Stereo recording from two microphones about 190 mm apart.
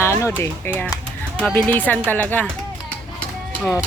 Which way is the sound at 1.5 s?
10° left (ahead or behind).